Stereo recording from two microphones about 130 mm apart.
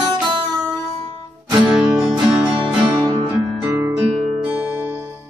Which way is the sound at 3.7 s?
25° right (ahead or behind).